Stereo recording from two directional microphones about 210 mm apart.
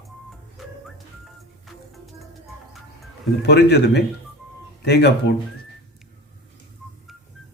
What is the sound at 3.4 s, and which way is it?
Speech, 55° left (ahead or behind).